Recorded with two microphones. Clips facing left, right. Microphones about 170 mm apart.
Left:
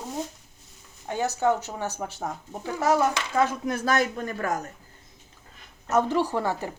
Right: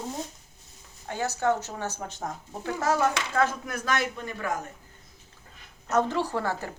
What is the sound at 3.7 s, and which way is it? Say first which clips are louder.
Speech: left 4 dB; 40° left (ahead or behind).